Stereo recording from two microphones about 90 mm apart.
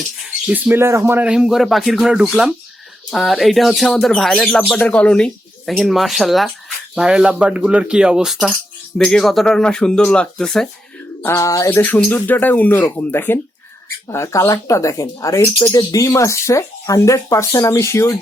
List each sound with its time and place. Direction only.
0.5 s speech: 25° right (ahead or behind)
1.2 s speech: 10° right (ahead or behind)
9.0 s speech: 5° left (ahead or behind)
11.3 s speech: 35° left (ahead or behind)
11.7 s speech: 20° left (ahead or behind)